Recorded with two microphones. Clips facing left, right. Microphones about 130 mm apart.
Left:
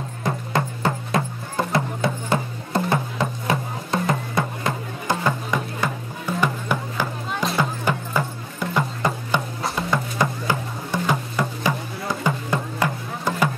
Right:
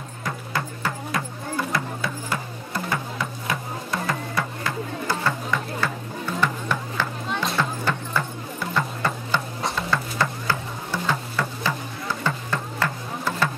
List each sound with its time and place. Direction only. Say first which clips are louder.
0.2 s music: left 5 dB; 25° left (ahead or behind)